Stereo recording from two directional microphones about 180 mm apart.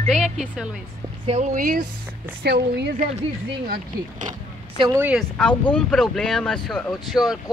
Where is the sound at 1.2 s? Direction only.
35° right (ahead or behind).